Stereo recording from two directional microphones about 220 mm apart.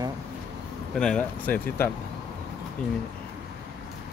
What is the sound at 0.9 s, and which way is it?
Speech, 5° left (ahead or behind).